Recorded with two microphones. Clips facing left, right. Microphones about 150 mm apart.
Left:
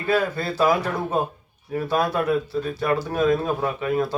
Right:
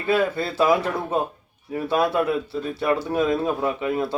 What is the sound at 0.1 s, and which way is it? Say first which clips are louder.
A man's voice: right 1 dB; 25° right (ahead or behind).